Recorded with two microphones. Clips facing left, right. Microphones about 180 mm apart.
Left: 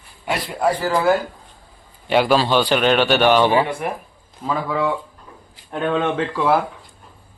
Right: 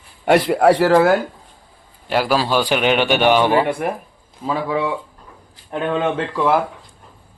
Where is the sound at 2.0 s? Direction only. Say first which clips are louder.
Left 2 dB; centre (ahead or behind).